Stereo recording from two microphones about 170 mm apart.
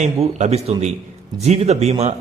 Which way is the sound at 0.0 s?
45° right (ahead or behind).